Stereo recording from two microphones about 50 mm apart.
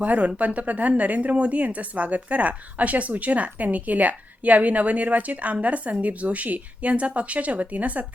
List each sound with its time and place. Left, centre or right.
0.0 s speech: right